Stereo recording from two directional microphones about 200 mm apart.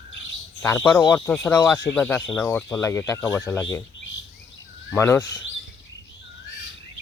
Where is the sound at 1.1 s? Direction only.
5° left (ahead or behind).